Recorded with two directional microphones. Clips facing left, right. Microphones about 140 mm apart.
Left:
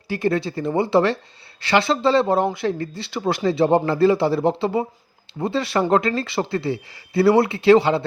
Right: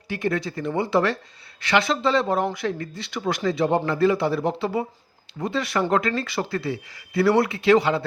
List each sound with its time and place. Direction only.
0.1 s speech: 30° left (ahead or behind)